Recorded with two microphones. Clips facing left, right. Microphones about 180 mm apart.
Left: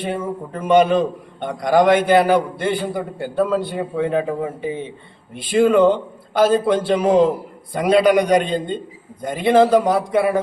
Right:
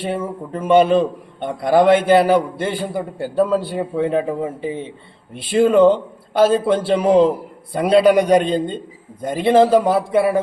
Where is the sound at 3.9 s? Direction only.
30° right (ahead or behind).